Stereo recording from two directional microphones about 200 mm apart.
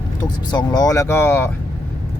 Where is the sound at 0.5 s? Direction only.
20° left (ahead or behind).